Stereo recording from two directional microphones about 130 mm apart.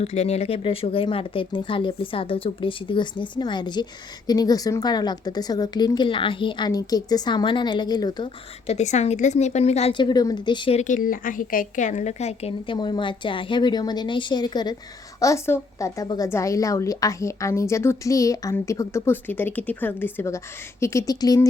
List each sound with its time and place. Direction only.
0.0 s a woman's voice: 55° left (ahead or behind); by 8.3 s 35° left (ahead or behind)
8.6 s a woman's voice: 60° left (ahead or behind)
9.9 s a woman's voice: 35° left (ahead or behind)
10.8 s a woman's voice: 80° left; by 14.8 s 35° left (ahead or behind)
15.2 s a woman's voice: 20° left (ahead or behind)